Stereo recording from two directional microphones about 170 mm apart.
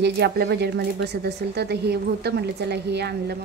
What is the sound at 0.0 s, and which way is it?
Speech, 75° right (ahead or behind).